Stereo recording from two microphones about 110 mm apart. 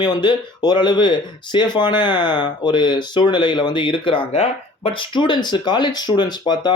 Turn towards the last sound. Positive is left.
turn(degrees=40)  # may be behind; listen again after turning